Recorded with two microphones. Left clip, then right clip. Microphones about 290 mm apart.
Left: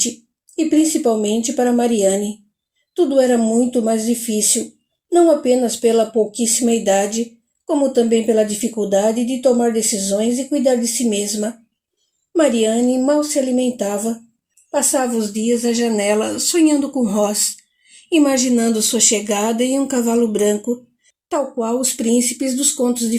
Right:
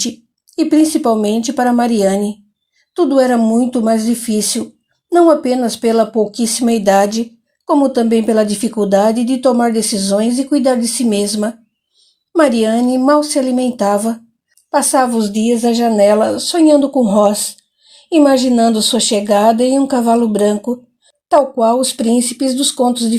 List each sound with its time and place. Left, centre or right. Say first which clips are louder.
0.5 s speech: right 4 dB; right